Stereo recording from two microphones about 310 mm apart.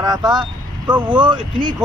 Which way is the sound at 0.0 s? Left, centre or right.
Centre.